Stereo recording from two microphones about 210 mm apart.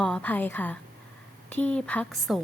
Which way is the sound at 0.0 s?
5° left (ahead or behind).